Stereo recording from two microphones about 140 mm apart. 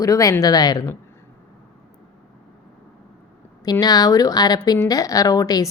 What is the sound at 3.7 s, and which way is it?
Speech, 30° left (ahead or behind).